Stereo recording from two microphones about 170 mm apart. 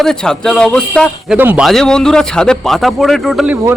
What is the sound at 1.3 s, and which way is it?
Speech, 10° right (ahead or behind).